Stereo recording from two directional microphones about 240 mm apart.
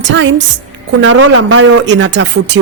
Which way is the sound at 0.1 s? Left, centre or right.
Right.